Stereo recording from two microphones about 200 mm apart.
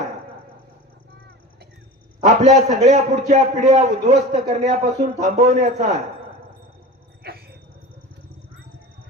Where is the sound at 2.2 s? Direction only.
35° right (ahead or behind).